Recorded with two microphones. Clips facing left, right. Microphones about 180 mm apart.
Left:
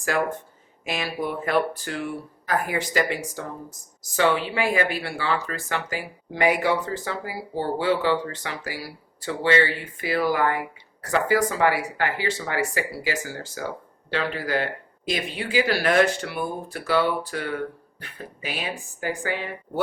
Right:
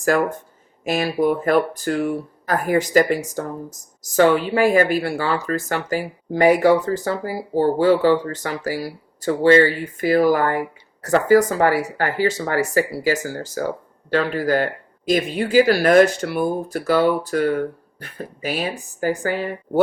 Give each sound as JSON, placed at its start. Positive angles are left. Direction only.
{"t": 0.0, "sound": "speech", "side_deg": -45}